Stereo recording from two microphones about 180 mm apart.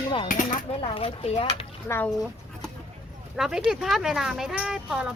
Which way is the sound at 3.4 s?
Centre (ahead or behind).